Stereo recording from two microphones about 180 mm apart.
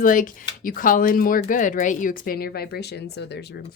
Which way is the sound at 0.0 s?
50° left (ahead or behind).